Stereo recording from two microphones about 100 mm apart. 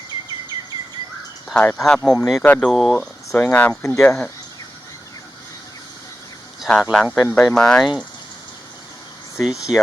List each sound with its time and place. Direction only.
0.5 s bird vocalization: 40° right (ahead or behind)
1.5 s speech: 5° left (ahead or behind)
2.6 s speech: centre (ahead or behind)
3.3 s speech: 15° left (ahead or behind)
3.7 s speech: 30° left (ahead or behind)
4.0 s speech: 10° left (ahead or behind)
6.6 s a sound: centre (ahead or behind)
6.9 s speech: 5° left (ahead or behind)
9.4 s speech: 5° right (ahead or behind)